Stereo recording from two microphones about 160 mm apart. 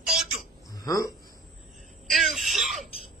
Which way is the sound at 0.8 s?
20° left (ahead or behind).